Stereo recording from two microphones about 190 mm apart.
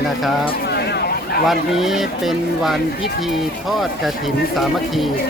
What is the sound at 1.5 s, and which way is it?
Speech, centre (ahead or behind).